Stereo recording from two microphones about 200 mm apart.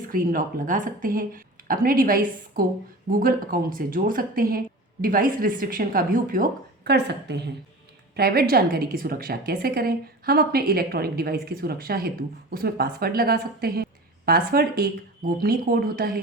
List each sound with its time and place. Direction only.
0.1 s a woman's voice: 45° right (ahead or behind)